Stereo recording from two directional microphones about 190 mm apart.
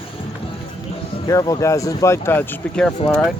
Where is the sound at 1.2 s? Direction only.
20° left (ahead or behind).